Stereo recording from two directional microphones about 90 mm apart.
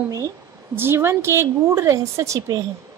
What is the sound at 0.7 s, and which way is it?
A woman's voice, 25° right (ahead or behind).